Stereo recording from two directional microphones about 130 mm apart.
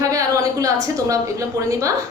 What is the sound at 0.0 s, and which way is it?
A woman's voice, 25° right (ahead or behind).